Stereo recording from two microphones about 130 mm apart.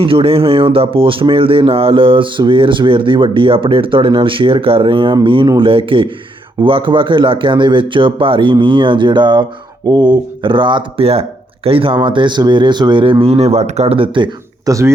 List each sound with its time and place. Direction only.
0.0 s speech: 45° right (ahead or behind)
14.6 s speech: 25° right (ahead or behind)